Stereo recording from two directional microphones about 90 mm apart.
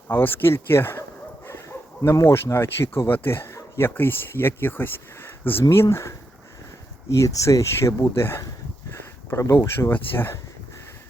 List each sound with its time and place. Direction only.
0.1 s speech: 25° left (ahead or behind)